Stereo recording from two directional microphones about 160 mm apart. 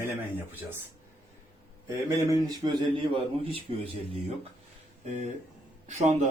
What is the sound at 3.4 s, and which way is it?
Speech, 35° right (ahead or behind).